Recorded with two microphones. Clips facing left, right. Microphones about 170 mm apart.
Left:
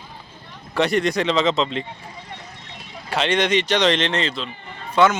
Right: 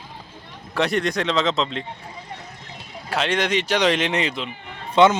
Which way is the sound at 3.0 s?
Centre (ahead or behind).